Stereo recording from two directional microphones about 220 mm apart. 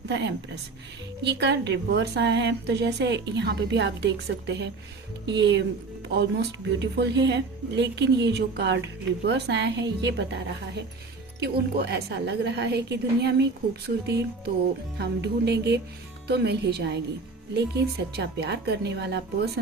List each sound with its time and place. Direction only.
0.1 s a woman's voice: 50° right (ahead or behind)
11.3 s a woman's voice: 50° right (ahead or behind)